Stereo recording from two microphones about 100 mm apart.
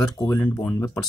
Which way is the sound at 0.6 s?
30° left (ahead or behind).